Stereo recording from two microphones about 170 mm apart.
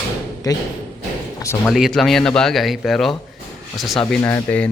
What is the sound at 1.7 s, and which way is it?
Speech, centre (ahead or behind).